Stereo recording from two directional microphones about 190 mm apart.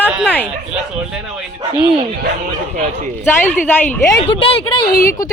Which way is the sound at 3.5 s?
10° left (ahead or behind).